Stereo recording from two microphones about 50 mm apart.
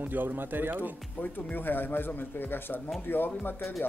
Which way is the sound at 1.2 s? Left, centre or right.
Left.